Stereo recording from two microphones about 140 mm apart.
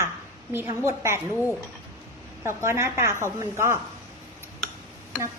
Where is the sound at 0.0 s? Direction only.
20° right (ahead or behind).